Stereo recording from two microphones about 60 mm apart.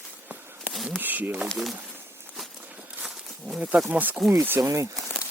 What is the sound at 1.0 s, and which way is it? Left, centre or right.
Speech, right.